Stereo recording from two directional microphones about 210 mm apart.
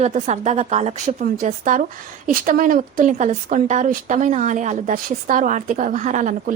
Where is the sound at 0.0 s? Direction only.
30° right (ahead or behind).